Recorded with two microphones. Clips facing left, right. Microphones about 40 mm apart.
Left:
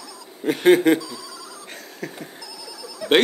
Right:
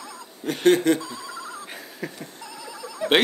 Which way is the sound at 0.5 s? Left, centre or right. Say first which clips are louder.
Left 3 dB; centre.